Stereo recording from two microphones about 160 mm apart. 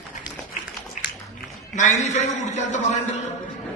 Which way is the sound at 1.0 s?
50° left (ahead or behind).